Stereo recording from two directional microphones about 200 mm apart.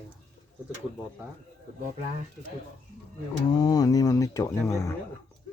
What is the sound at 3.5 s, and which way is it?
Speech, 20° left (ahead or behind).